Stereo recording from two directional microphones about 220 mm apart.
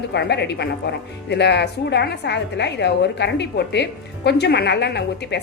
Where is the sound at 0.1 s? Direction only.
50° left (ahead or behind).